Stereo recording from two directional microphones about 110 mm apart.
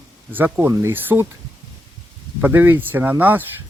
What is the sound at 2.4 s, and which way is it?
Speech, 20° right (ahead or behind).